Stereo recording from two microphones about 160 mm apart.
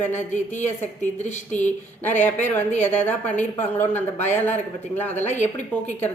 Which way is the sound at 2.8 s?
10° left (ahead or behind).